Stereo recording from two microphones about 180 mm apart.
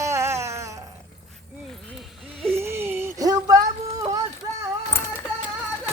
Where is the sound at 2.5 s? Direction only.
15° right (ahead or behind).